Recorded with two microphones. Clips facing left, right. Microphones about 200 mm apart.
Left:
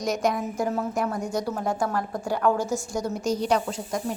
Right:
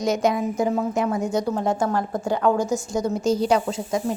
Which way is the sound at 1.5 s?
25° right (ahead or behind).